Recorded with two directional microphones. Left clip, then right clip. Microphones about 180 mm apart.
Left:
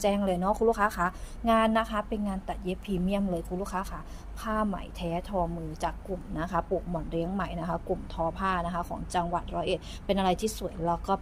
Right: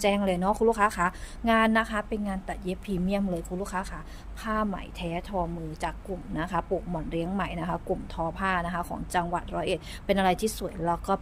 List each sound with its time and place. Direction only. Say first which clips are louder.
0.0 s speech: right 2 dB; 30° right (ahead or behind)